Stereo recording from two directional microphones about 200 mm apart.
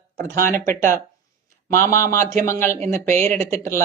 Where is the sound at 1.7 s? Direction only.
15° left (ahead or behind).